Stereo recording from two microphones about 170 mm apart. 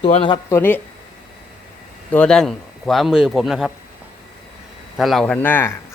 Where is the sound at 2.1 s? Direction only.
5° left (ahead or behind).